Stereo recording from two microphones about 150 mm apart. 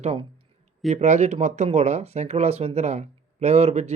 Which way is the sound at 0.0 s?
40° right (ahead or behind).